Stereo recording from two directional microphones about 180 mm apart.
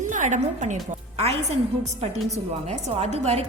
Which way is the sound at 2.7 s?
35° right (ahead or behind).